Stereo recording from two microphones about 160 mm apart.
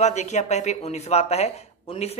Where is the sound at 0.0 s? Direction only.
45° left (ahead or behind).